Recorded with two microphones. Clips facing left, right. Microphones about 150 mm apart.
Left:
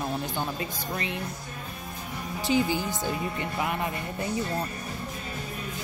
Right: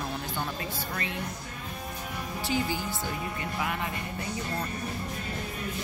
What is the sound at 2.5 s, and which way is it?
Speech, 20° left (ahead or behind).